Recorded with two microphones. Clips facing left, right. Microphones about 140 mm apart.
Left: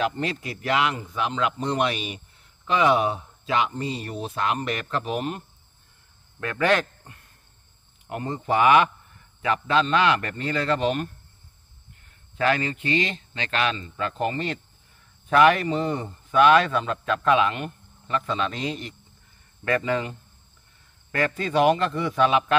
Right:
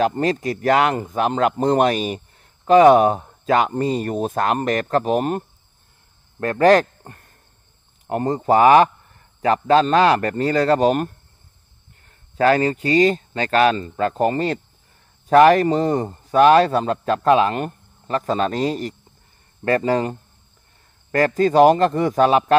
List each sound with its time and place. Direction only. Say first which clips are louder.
0.0 s speech: right 7 dB; 40° right (ahead or behind)
6.4 s speech: right 9 dB; 40° right (ahead or behind)
12.1 s speech: right 7 dB; 40° right (ahead or behind)